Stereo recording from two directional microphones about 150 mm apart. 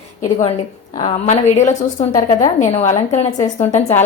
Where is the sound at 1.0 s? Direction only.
50° left (ahead or behind).